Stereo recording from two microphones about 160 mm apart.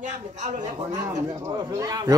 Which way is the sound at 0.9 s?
20° right (ahead or behind).